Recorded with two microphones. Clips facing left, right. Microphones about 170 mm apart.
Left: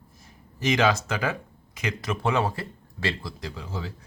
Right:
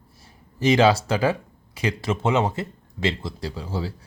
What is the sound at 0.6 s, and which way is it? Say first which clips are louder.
Speech: right 5 dB; 30° right (ahead or behind).